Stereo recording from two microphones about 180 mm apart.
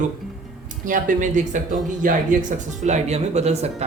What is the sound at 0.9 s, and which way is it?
Speech, 45° right (ahead or behind).